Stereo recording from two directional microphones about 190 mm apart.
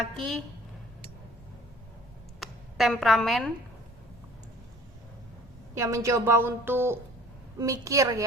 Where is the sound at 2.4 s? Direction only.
Centre (ahead or behind).